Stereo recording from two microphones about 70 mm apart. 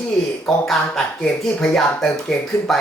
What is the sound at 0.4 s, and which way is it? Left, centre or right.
Speech, centre.